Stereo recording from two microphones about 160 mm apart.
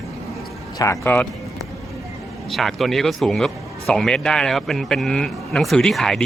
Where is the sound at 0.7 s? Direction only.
20° left (ahead or behind).